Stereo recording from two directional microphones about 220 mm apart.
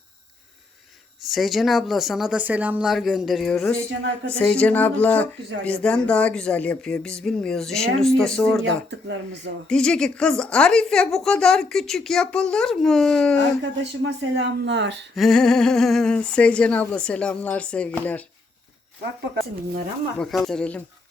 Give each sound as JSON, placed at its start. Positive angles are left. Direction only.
{"t": 1.3, "sound": "a woman's voice", "side_deg": 0}
{"t": 8.6, "sound": "speech", "side_deg": -55}
{"t": 9.6, "sound": "a woman's voice", "side_deg": 5}
{"t": 13.6, "sound": "speech", "side_deg": -55}
{"t": 15.1, "sound": "a woman's voice", "side_deg": 0}
{"t": 20.1, "sound": "a woman's voice", "side_deg": 0}